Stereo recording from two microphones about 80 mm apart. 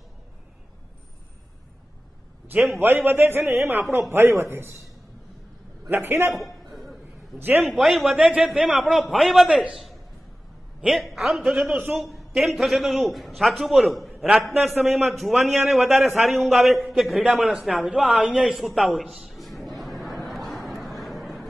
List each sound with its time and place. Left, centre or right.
2.8 s a man's voice: right
5.9 s a man's voice: right
6.3 s a sound: centre
7.3 s a man's voice: right
7.6 s a man's voice: centre
9.5 s a woman's voice: centre
10.8 s a woman's voice: centre
11.6 s a man's voice: centre
12.0 s a man's voice: centre
18.9 s a sound: centre
21.0 s vehicle: centre